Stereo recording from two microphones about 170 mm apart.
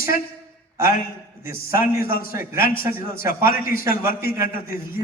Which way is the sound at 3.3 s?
55° left (ahead or behind).